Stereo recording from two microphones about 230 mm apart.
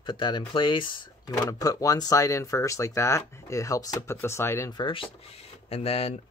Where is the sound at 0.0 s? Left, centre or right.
Centre.